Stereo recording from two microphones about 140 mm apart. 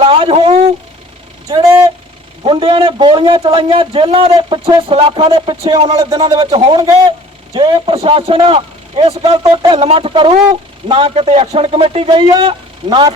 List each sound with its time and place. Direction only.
0.0 s a man's voice: 40° right (ahead or behind)
1.5 s speech: 25° right (ahead or behind)
2.4 s a man's voice: 40° right (ahead or behind)
9.4 s a man's voice: 30° right (ahead or behind)